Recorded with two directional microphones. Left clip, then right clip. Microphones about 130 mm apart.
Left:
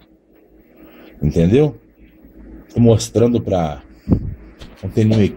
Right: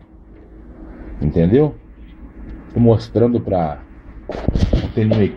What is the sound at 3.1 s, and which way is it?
Speech, 55° left (ahead or behind).